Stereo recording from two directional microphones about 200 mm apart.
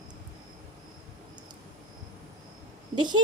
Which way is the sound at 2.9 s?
20° right (ahead or behind).